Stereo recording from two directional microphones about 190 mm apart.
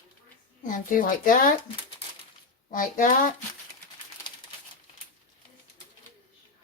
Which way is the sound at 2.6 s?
45° left (ahead or behind).